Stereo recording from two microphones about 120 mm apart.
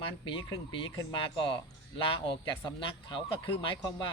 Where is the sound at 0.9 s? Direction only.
40° left (ahead or behind).